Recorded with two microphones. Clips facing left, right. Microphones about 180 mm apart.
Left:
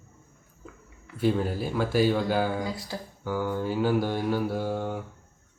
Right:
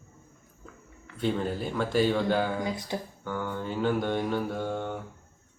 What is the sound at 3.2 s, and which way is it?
Mantra, 5° left (ahead or behind).